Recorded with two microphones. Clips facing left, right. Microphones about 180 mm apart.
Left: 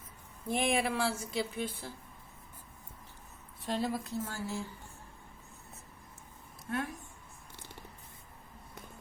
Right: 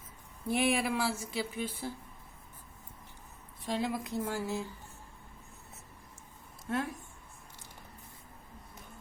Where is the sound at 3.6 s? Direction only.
15° right (ahead or behind).